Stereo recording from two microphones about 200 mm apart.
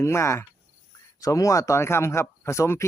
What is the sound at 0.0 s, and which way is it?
Speech, 15° left (ahead or behind).